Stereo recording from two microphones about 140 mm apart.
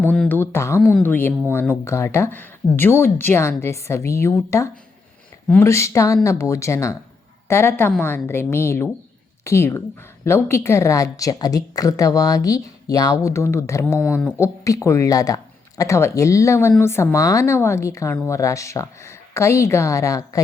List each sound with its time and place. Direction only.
0.3 s a woman's voice: 15° left (ahead or behind)
0.8 s speech: 5° right (ahead or behind)
1.0 s a woman's voice: 15° left (ahead or behind)